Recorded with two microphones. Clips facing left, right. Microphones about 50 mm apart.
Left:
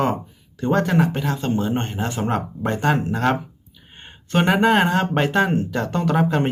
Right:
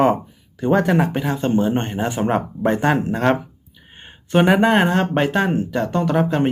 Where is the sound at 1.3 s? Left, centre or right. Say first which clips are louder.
Right 4 dB; right.